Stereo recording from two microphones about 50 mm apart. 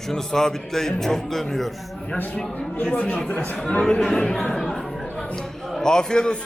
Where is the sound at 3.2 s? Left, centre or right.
Centre.